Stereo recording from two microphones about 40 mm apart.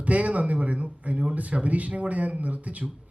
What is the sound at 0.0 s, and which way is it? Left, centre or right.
Speech, right.